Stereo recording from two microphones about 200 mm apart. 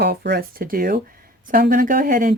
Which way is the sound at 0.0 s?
55° right (ahead or behind).